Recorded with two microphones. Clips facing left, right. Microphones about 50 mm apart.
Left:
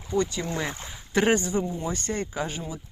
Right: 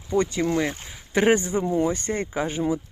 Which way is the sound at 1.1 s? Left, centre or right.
Centre.